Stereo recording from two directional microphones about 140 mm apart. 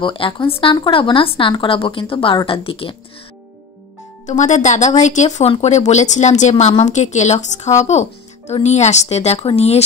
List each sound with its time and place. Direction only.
0.0 s a woman's voice: 35° left (ahead or behind)
4.3 s speech: 60° left (ahead or behind)